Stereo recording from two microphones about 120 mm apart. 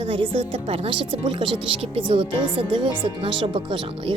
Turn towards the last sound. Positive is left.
turn(degrees=-45)  # may be behind; listen again after turning